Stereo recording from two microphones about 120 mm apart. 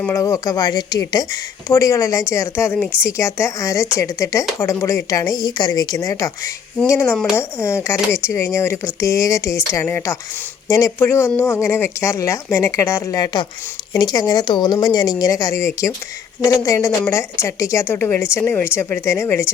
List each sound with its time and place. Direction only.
0.1 s a woman's voice: 30° left (ahead or behind)